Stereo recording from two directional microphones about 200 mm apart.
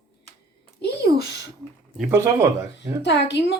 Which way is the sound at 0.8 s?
55° left (ahead or behind).